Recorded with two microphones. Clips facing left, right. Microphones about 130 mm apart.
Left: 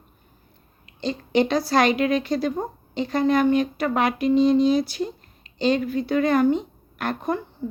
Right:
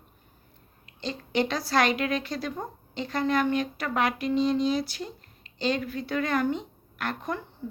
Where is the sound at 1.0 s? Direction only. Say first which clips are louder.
Left 6 dB; 15° left (ahead or behind).